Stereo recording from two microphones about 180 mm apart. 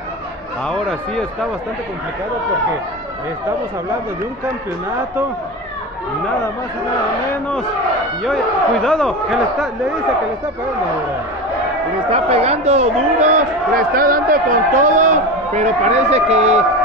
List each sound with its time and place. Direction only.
0.7 s a man's voice: 5° left (ahead or behind)
8.8 s a man's voice: 5° left (ahead or behind)
12.1 s speech: 35° right (ahead or behind)